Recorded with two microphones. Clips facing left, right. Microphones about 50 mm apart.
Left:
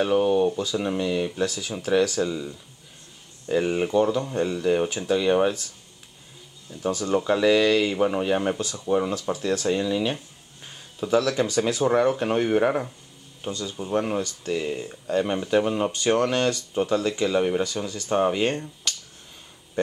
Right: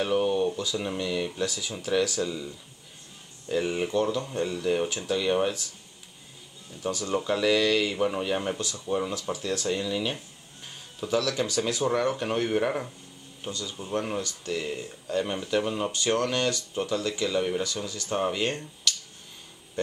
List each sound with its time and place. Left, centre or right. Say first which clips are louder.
0.2 s speech: left 4 dB; centre
6.7 s speech: left 5 dB; centre